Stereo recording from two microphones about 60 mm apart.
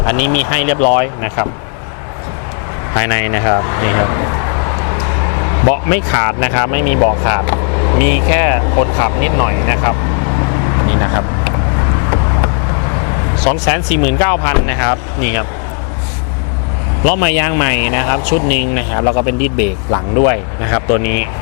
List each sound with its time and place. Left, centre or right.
0.0 s speech: left
2.9 s speech: left
17.0 s speech: left